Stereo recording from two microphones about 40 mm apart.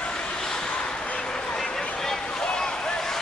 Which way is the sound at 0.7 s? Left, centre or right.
Left.